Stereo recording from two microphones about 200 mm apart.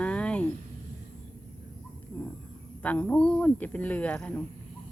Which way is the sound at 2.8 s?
5° left (ahead or behind).